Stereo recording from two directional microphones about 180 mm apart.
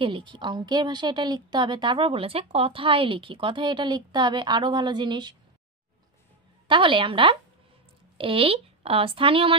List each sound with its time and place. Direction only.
0.0 s a woman's voice: 25° right (ahead or behind)
6.7 s a woman's voice: 30° right (ahead or behind)